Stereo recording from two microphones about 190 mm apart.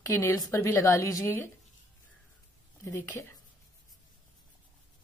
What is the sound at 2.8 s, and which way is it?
Speech, 15° left (ahead or behind).